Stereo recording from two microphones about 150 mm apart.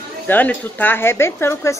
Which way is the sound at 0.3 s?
10° left (ahead or behind).